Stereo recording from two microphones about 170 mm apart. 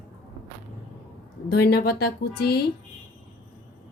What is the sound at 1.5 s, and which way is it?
A woman's voice, 70° left (ahead or behind).